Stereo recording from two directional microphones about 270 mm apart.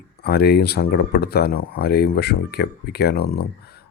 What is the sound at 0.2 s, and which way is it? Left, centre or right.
Speech, left.